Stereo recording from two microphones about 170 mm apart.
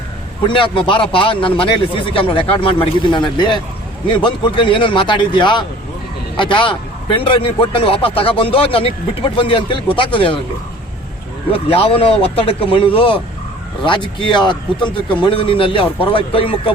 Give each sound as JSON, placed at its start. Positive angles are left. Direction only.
{"t": 0.4, "sound": "a man's voice", "side_deg": 30}
{"t": 11.5, "sound": "a man's voice", "side_deg": 35}